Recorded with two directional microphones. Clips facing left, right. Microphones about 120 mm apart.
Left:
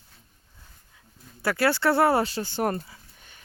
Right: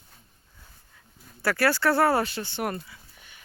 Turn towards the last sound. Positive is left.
turn(degrees=40)  # may be behind; listen again after turning